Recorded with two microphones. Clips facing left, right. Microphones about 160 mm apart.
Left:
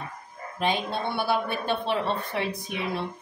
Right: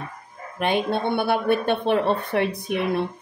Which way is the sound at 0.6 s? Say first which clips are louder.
Right 5 dB; 60° right (ahead or behind).